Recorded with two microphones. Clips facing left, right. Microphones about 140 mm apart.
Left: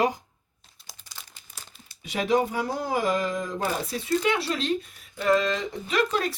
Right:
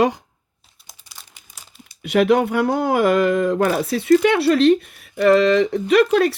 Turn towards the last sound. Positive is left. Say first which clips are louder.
# right 11 dB
turn(degrees=-75)  # may be behind; listen again after turning